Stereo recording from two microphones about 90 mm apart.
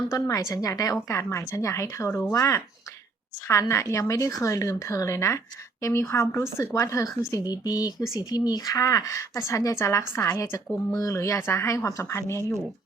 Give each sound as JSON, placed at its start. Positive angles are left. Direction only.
{"t": 0.1, "sound": "a woman's voice", "side_deg": 40}
{"t": 1.0, "sound": "a woman's voice", "side_deg": 30}